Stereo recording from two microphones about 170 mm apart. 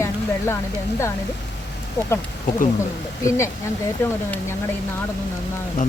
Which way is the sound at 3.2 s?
15° left (ahead or behind).